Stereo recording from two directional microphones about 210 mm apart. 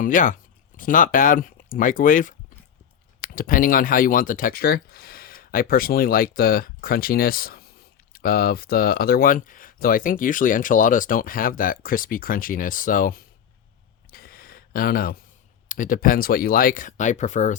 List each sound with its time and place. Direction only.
0.0 s speech: 40° left (ahead or behind)
14.1 s a sound: 45° left (ahead or behind)
15.7 s speech: 40° left (ahead or behind)